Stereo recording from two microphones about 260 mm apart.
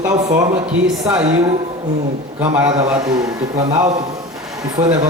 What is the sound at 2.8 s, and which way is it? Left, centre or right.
Speech, centre.